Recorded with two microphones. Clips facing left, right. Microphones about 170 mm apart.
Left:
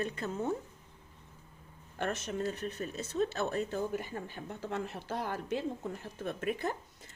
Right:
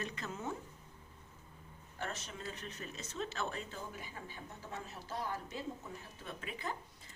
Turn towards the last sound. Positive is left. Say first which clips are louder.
# left 9 dB
turn(degrees=50)  # may be behind; listen again after turning